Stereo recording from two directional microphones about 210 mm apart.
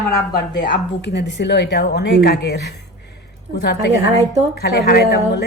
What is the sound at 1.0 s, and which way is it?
A woman's voice, 55° left (ahead or behind).